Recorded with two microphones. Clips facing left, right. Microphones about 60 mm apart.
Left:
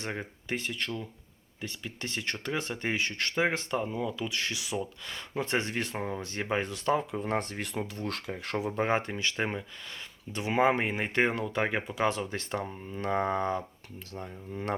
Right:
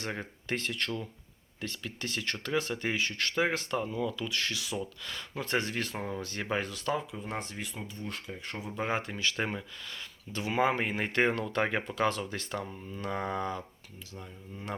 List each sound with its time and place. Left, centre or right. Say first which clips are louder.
0.1 s speech: left 1 dB; centre
2.0 s speech: left 1 dB; left
7.2 s speech: left 6 dB; left
8.4 s speech: left 9 dB; left
8.7 s speech: left 2 dB; left
9.3 s speech: left 2 dB; centre
10.3 s speech: left 3 dB; left
14.1 s speech: left 6 dB; left